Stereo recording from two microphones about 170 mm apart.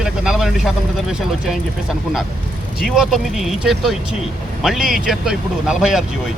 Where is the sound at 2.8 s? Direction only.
Centre (ahead or behind).